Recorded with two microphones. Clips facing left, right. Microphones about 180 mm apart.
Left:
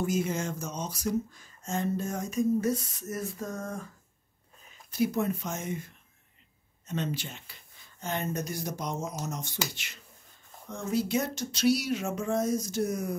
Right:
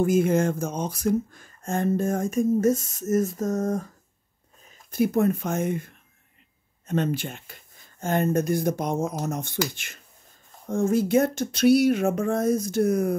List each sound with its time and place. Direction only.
0.0 s speech: 55° right (ahead or behind)
4.9 s speech: 50° right (ahead or behind)